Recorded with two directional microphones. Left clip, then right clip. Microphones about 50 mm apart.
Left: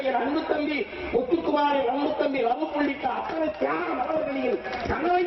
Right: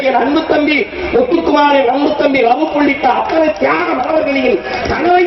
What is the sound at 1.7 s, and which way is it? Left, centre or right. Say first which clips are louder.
Speech: right 13 dB; centre.